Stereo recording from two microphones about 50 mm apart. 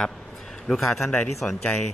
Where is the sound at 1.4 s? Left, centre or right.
Centre.